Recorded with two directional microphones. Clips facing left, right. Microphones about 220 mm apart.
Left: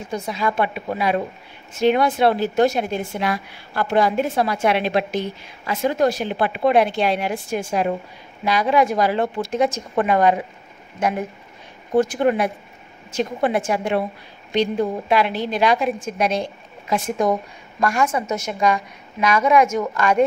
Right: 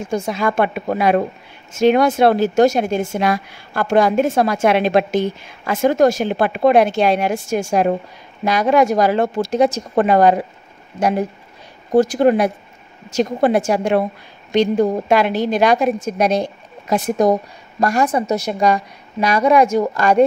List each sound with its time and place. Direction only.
0.1 s a woman's voice: 50° right (ahead or behind)